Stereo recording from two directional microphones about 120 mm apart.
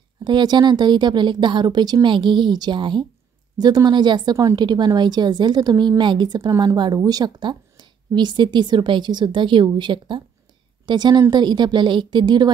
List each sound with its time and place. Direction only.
0.2 s a woman's voice: 40° right (ahead or behind)